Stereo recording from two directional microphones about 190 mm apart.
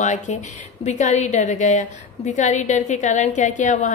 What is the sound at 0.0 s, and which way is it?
A woman's voice, 40° left (ahead or behind).